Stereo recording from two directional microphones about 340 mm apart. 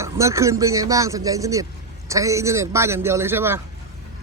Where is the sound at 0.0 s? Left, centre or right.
Centre.